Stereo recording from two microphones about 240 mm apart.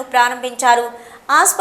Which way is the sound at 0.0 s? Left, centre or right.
Centre.